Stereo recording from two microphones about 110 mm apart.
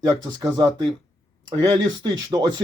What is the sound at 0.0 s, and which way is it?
Speech, 35° right (ahead or behind).